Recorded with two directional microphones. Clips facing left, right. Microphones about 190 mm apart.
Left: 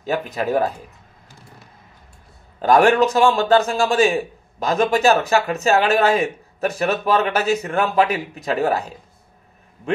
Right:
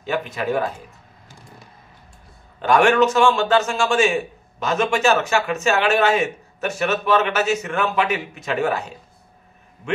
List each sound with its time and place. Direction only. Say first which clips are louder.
0.0 s a man's voice: left 2 dB; 40° left (ahead or behind)
2.6 s a man's voice: left 1 dB; 35° left (ahead or behind)